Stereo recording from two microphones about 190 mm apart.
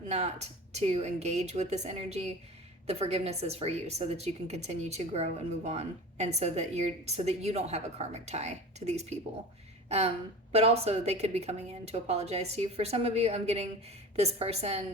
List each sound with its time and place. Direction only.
0.1 s a woman's voice: 35° right (ahead or behind)
10.5 s a woman's voice: 35° right (ahead or behind)